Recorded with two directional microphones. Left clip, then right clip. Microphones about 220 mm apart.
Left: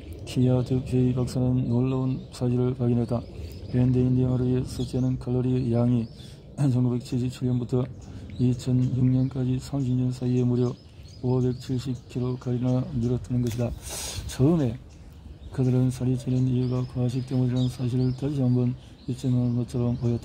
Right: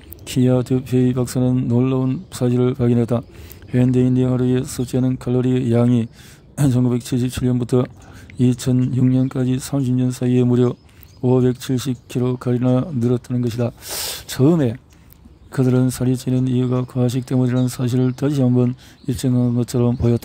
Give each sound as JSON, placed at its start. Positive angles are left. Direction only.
{"t": 0.3, "sound": "speech", "side_deg": -35}